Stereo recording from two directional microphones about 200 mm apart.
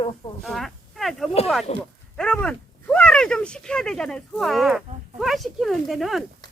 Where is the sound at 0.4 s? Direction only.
Centre (ahead or behind).